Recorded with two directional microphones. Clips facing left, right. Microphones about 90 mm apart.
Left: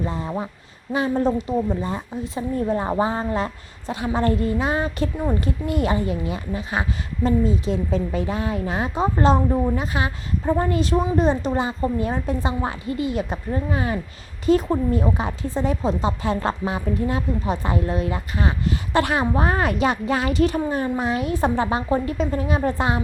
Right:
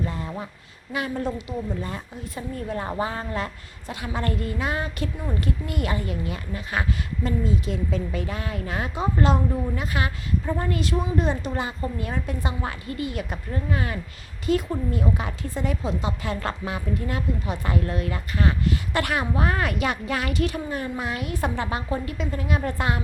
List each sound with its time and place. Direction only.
0.0 s a man's voice: 25° left (ahead or behind)
1.8 s a woman's voice: 25° left (ahead or behind)